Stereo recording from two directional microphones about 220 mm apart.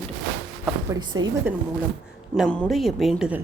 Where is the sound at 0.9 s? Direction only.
20° right (ahead or behind).